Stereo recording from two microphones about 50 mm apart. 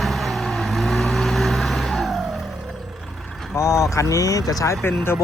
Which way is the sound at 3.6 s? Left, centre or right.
Left.